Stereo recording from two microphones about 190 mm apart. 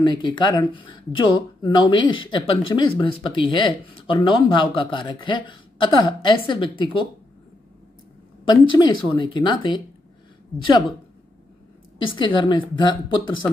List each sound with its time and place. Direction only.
0.0 s speech: 25° left (ahead or behind)
8.5 s speech: 25° left (ahead or behind)
12.0 s speech: 25° left (ahead or behind)